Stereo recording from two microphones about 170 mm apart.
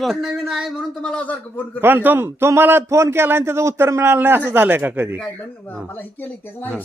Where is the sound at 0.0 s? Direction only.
Centre (ahead or behind).